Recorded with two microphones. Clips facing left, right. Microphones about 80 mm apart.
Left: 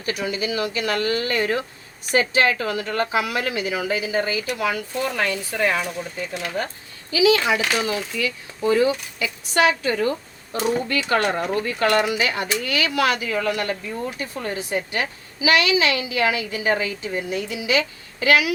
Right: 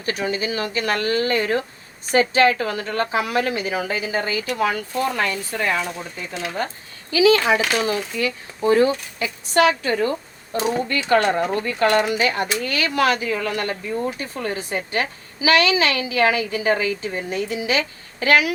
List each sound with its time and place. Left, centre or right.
0.0 s speech: right
7.1 s speech: right